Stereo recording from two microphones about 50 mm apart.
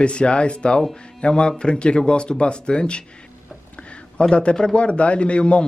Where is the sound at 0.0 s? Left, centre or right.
Left.